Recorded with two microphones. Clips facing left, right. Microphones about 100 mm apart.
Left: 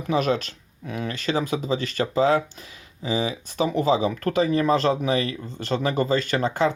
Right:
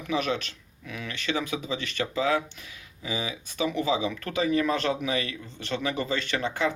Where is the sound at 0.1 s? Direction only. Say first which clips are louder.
Left 5 dB; 40° left (ahead or behind).